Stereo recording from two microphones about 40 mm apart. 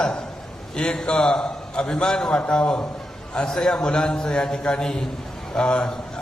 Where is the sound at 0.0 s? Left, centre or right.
Centre.